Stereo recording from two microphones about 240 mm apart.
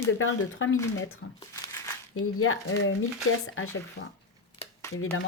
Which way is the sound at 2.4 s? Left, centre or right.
Left.